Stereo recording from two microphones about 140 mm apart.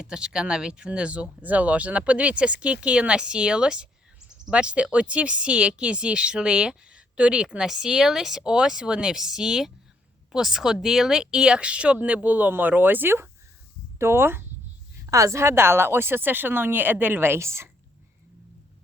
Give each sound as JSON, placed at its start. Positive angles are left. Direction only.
{"t": 0.0, "sound": "speech", "side_deg": -5}